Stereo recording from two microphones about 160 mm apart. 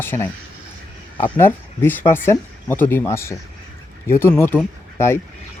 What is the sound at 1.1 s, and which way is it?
Speech, 30° left (ahead or behind).